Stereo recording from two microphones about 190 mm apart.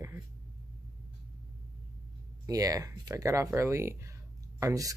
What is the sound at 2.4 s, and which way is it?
Speech, 20° right (ahead or behind).